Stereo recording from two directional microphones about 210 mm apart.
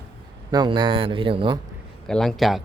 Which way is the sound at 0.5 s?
20° right (ahead or behind).